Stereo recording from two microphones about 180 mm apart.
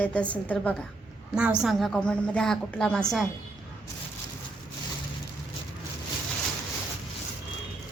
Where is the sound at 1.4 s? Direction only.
5° right (ahead or behind).